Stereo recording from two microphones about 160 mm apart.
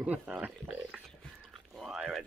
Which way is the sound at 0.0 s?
5° right (ahead or behind).